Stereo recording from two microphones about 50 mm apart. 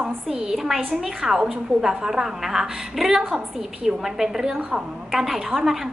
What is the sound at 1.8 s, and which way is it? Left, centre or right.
A woman's voice, centre.